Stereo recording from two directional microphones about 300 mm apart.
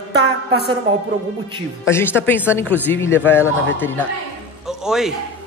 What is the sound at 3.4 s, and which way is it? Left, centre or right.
Speech, left.